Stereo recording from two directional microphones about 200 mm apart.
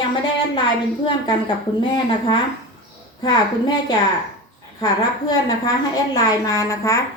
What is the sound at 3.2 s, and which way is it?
Speech, 20° left (ahead or behind).